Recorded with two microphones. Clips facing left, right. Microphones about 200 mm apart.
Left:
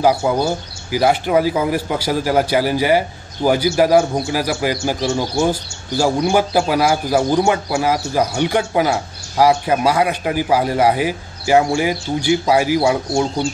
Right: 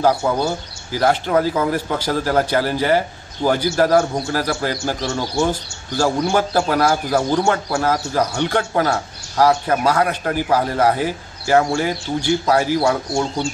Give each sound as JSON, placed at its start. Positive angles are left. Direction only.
{"t": 0.0, "sound": "a man's voice", "side_deg": 10}